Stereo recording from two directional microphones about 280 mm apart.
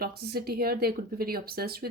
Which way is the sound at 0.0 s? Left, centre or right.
Right.